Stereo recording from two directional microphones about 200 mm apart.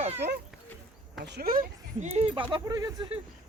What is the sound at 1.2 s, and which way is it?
Speech, 50° right (ahead or behind).